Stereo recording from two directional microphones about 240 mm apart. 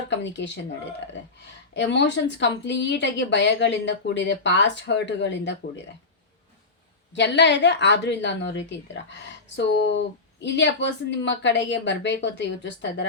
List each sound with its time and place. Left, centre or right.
0.1 s speech: left
1.7 s speech: left
7.1 s speech: left